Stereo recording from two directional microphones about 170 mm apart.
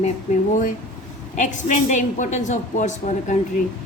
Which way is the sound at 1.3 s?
45° left (ahead or behind).